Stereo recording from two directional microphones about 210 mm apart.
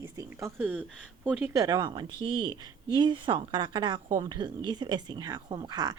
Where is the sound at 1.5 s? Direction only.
15° right (ahead or behind).